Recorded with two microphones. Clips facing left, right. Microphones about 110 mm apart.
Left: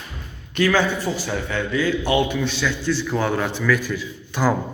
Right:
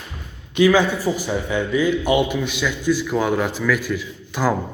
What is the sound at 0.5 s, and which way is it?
A man's voice, 15° right (ahead or behind).